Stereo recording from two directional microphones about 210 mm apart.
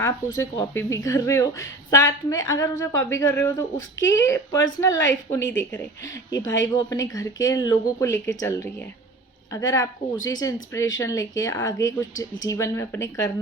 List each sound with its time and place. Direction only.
0.0 s speech: 15° left (ahead or behind)